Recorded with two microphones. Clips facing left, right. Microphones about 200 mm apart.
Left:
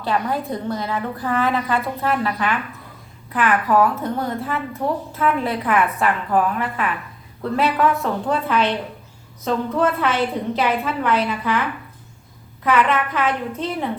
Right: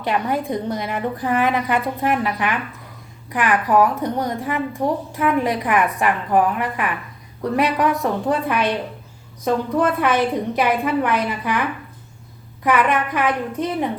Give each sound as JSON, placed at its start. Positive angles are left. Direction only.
{"t": 0.0, "sound": "a woman's voice", "side_deg": -20}
{"t": 12.6, "sound": "a woman's voice", "side_deg": -15}